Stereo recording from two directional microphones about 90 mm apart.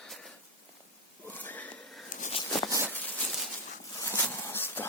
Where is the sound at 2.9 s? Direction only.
20° left (ahead or behind).